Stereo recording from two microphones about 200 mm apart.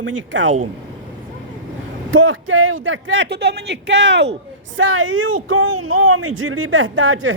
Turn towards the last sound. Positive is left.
turn(degrees=-90)